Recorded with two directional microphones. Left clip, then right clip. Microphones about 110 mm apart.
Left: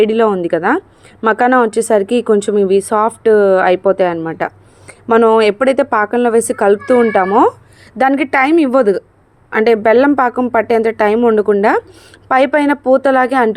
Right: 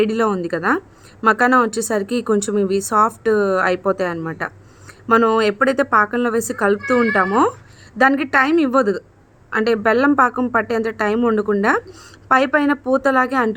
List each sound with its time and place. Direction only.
0.0 s a woman's voice: 25° left (ahead or behind)
5.4 s a woman's voice: 35° left (ahead or behind)